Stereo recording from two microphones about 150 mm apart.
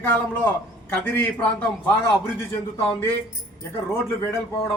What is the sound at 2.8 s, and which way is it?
Speech, 10° left (ahead or behind).